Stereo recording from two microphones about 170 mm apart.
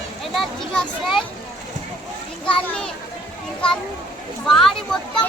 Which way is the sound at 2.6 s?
5° left (ahead or behind).